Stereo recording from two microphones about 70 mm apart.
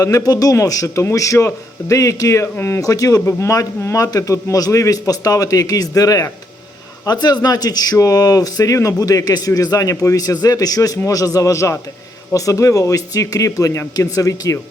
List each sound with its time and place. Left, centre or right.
0.0 s a man's voice: left
2.6 s speech: left
2.8 s a man's voice: left
3.8 s a man's voice: left
7.0 s a man's voice: left
7.9 s a man's voice: left
9.9 s speech: left
10.2 s a man's voice: left